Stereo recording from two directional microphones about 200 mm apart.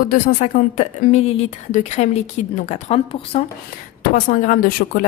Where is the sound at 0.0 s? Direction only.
40° left (ahead or behind).